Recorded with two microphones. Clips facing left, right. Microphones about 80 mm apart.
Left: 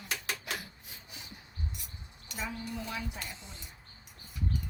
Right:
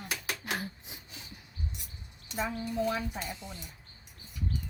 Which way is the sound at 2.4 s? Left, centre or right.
Right.